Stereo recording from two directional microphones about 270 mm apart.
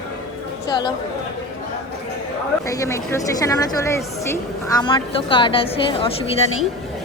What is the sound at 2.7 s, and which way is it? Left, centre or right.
A woman's voice, centre.